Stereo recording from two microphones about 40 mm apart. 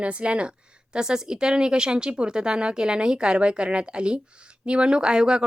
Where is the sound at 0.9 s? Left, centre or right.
Centre.